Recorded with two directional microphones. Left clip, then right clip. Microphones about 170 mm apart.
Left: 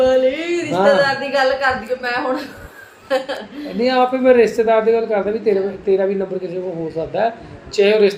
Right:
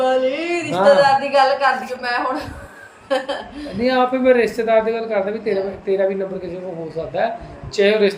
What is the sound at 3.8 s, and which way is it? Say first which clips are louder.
Speech: left 2 dB; 20° left (ahead or behind).